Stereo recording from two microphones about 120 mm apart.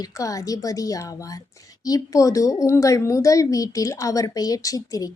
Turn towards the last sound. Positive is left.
turn(degrees=30)  # may be behind; listen again after turning